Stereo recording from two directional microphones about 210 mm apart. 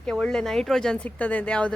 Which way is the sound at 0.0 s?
5° left (ahead or behind).